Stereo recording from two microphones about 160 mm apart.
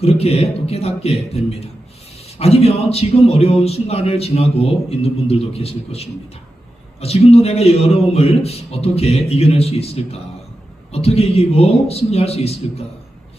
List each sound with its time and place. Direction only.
0.0 s a man's voice: 40° left (ahead or behind)